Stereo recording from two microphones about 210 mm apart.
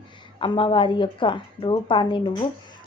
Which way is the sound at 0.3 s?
25° left (ahead or behind).